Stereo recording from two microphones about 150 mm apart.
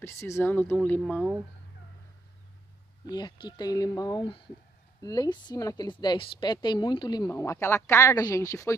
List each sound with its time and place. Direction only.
0.0 s speech: 20° left (ahead or behind)
3.1 s a woman's voice: 30° left (ahead or behind)